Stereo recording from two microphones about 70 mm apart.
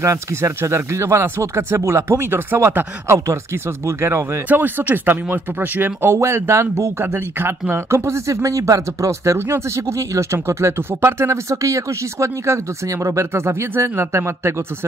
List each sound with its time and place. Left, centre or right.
0.0 s speech: right
3.8 s speech: right
4.5 s speech: right